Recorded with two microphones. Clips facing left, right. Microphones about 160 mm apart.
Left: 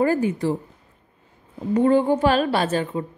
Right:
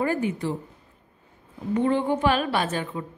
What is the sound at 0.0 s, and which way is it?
Speech, 40° left (ahead or behind).